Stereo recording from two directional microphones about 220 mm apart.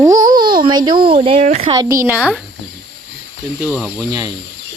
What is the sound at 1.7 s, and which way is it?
Speech, 15° right (ahead or behind).